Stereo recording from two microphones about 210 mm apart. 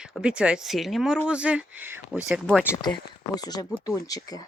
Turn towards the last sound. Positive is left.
turn(degrees=15)  # may be behind; listen again after turning